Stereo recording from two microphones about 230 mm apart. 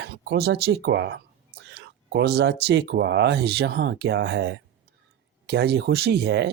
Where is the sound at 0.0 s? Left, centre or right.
Right.